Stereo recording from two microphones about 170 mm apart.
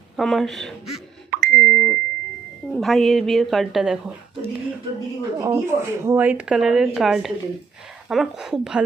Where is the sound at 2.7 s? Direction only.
Centre (ahead or behind).